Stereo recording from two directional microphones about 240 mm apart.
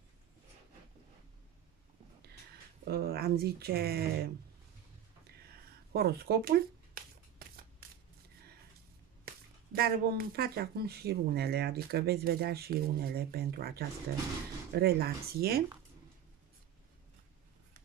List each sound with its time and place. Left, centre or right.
2.8 s speech: right
5.9 s a sound: right
9.7 s speech: right